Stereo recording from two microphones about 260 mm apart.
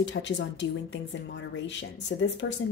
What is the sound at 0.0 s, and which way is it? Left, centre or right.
Speech, left.